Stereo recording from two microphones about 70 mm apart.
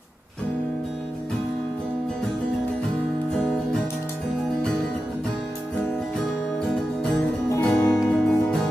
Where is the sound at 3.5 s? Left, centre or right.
Centre.